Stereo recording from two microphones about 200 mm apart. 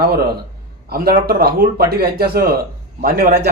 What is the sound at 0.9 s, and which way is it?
A man's voice, 50° right (ahead or behind).